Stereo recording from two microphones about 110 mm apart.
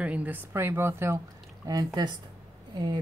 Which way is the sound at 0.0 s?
15° right (ahead or behind).